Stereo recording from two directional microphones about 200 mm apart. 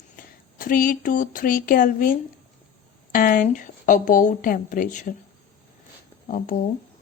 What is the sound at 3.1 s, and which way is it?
A woman's voice, 40° left (ahead or behind).